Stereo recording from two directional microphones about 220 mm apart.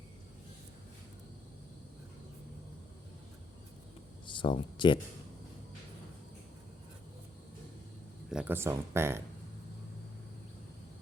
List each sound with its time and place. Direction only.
4.3 s speech: 20° left (ahead or behind)
8.3 s speech: 5° right (ahead or behind)